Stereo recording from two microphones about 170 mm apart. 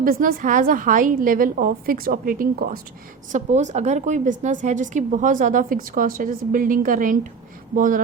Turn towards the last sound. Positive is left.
turn(degrees=-50)  # may be behind; listen again after turning